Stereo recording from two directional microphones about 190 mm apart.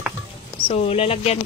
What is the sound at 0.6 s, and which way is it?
Speech, 30° left (ahead or behind).